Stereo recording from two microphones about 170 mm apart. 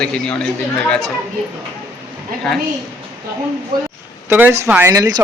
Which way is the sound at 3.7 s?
55° right (ahead or behind).